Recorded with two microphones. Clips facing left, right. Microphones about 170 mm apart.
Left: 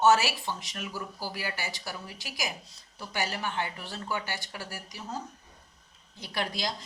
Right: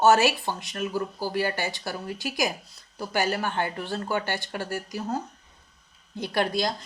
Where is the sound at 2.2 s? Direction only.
60° right (ahead or behind).